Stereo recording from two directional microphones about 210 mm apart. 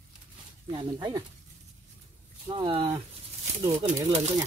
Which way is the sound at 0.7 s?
20° right (ahead or behind).